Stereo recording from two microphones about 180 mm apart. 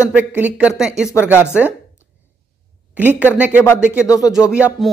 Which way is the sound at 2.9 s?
10° right (ahead or behind).